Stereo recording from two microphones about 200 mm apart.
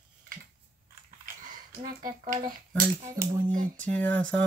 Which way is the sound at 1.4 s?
40° right (ahead or behind).